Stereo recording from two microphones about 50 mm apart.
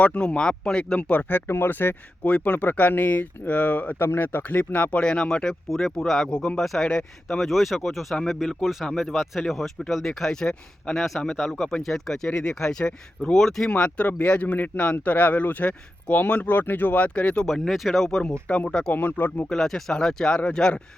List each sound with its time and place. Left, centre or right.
0.0 s speech: left
1.5 s speech: left
2.2 s speech: left
3.9 s speech: left
4.2 s speech: left
4.5 s speech: left
4.9 s speech: centre
6.2 s speech: centre
7.4 s speech: centre
13.7 s speech: left
17.4 s speech: centre
18.2 s speech: centre
18.9 s speech: left
19.5 s speech: centre